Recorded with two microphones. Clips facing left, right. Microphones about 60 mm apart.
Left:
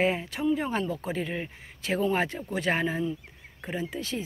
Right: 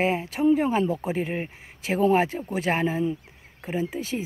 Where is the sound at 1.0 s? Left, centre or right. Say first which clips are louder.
Right 4 dB; right.